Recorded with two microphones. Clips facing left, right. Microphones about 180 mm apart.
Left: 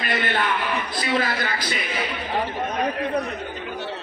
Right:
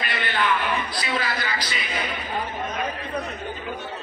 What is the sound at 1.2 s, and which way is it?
Speech, 50° left (ahead or behind).